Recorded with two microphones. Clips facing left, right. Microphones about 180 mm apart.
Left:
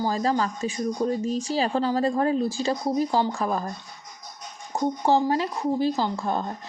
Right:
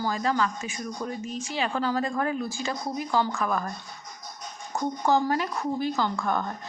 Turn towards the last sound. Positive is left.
turn(degrees=30)  # may be behind; listen again after turning